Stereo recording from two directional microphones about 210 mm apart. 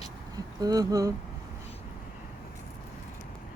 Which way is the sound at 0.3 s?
20° right (ahead or behind).